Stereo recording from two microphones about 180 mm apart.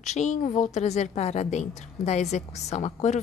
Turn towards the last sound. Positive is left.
turn(degrees=40)  # may be behind; listen again after turning